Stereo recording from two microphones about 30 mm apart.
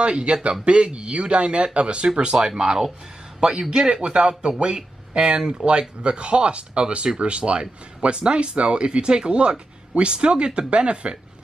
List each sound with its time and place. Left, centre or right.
0.0 s speech: right
2.4 s a man's voice: right